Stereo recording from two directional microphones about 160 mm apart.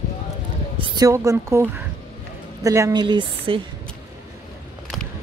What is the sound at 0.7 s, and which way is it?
A woman's voice, 30° right (ahead or behind).